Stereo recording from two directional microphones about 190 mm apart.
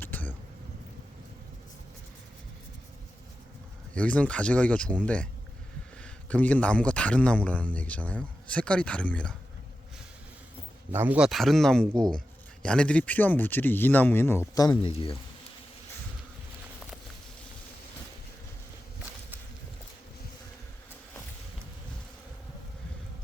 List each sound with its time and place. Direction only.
0.0 s a sound: 10° left (ahead or behind)
3.9 s a man's voice: 5° left (ahead or behind)
10.9 s a man's voice: 10° right (ahead or behind); by 14.8 s 15° left (ahead or behind)
14.8 s speech: 30° left (ahead or behind)